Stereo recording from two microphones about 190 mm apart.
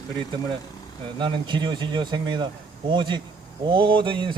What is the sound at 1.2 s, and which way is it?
Speech, 25° right (ahead or behind).